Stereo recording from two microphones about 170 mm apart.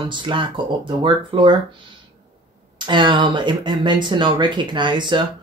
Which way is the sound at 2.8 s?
25° right (ahead or behind).